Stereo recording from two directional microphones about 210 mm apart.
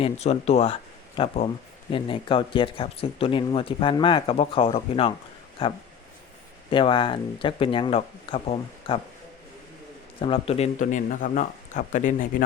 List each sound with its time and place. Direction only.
0.0 s speech: 30° left (ahead or behind)
10.2 s speech: 25° left (ahead or behind)